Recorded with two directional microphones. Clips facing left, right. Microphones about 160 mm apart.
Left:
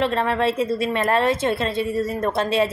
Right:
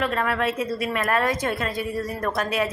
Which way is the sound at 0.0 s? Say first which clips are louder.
Left 4 dB; 30° left (ahead or behind).